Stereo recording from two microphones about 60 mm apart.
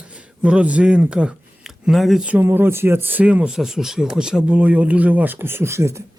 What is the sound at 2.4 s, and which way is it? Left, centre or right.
A man's voice, right.